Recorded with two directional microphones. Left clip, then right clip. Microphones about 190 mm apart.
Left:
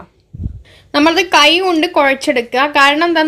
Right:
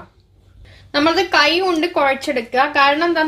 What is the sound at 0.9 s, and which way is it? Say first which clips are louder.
A woman's voice: left 4 dB; 40° left (ahead or behind).